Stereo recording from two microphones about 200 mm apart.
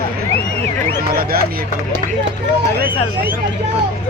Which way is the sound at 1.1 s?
50° right (ahead or behind).